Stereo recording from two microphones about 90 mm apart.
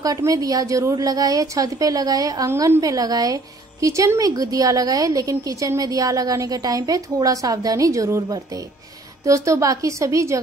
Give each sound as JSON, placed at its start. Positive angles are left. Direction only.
{"t": 0.0, "sound": "a woman's voice", "side_deg": -40}